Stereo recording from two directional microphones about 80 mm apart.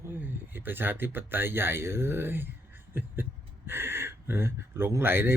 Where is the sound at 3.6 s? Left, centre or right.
Right.